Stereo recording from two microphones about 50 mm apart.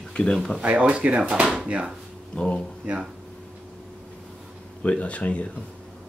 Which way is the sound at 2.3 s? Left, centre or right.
Centre.